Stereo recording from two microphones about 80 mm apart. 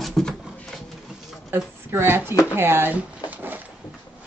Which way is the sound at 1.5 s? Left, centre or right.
Right.